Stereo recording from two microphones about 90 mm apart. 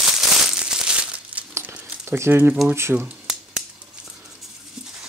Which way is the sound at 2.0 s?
25° right (ahead or behind).